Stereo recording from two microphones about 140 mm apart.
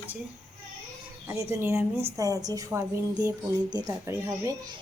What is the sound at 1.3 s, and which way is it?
A woman's voice, 20° right (ahead or behind).